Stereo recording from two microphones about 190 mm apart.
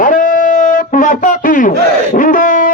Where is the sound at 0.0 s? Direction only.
45° left (ahead or behind).